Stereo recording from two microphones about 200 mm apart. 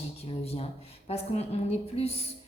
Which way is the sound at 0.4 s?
30° left (ahead or behind).